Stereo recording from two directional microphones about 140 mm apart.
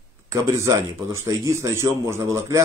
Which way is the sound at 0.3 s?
20° right (ahead or behind).